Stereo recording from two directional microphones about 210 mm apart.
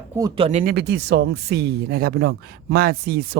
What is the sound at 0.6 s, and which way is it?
Speech, 50° right (ahead or behind).